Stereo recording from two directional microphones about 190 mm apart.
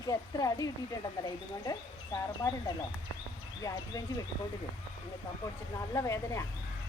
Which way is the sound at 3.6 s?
20° left (ahead or behind).